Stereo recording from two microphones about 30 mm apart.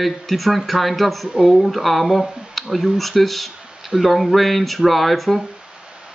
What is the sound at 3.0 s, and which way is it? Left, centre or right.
Speech, centre.